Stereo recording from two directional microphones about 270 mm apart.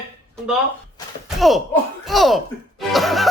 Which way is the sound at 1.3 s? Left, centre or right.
Centre.